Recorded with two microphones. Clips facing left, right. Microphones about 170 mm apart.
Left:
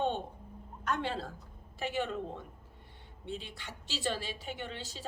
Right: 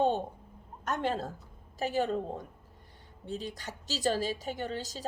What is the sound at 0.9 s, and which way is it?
Speech, 45° right (ahead or behind).